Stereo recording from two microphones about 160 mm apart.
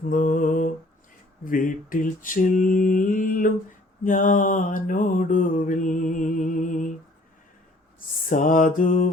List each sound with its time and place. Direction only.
0.1 s lullaby: 55° left (ahead or behind)
1.5 s mantra: 60° left (ahead or behind)
8.3 s mantra: 55° left (ahead or behind)